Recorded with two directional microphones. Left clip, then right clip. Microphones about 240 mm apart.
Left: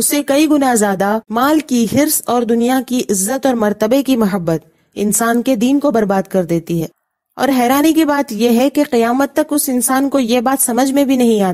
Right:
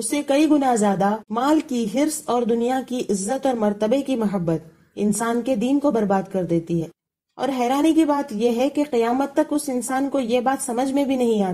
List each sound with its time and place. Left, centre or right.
0.3 s a woman's voice: left